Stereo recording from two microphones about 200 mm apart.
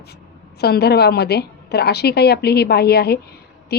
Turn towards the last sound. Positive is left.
turn(degrees=50)  # may be behind; listen again after turning